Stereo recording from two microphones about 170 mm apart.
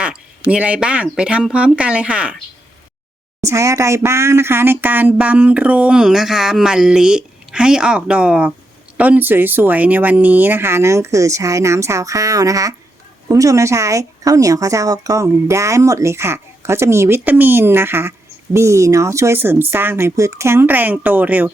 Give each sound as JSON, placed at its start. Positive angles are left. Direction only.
{"t": 0.0, "sound": "speech", "side_deg": -5}
{"t": 3.4, "sound": "speech", "side_deg": -20}